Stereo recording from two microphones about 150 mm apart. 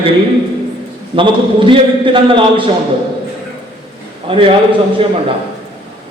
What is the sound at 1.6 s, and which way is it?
Speech, 35° right (ahead or behind).